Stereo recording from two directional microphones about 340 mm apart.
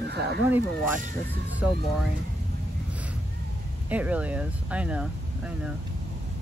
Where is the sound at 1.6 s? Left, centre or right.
Centre.